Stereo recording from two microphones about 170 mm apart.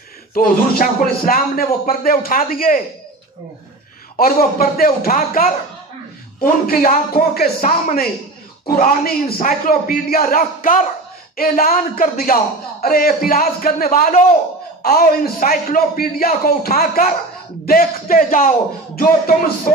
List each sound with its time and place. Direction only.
0.3 s a man's voice: 60° left (ahead or behind)
4.2 s a man's voice: 60° left (ahead or behind)